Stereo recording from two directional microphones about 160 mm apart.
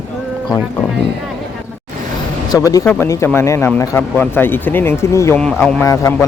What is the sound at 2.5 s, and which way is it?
Speech, 25° left (ahead or behind).